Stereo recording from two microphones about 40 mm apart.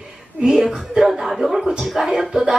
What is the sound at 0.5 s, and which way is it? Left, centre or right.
Speech, centre.